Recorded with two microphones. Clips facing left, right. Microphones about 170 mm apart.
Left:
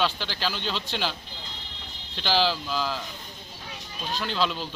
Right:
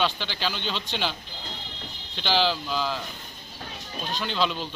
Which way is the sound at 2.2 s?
5° left (ahead or behind).